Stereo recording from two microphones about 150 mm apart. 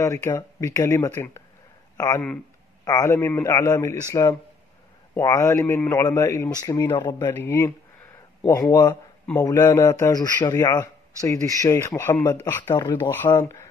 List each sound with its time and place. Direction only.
0.0 s speech: 20° left (ahead or behind)
7.2 s speech: 15° left (ahead or behind)
12.7 s speech: 25° left (ahead or behind)